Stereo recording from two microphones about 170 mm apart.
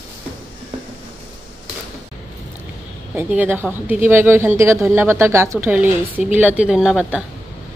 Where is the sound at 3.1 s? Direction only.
10° right (ahead or behind).